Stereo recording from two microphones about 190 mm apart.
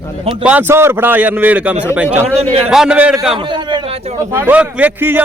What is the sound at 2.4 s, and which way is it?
Speech, 30° right (ahead or behind).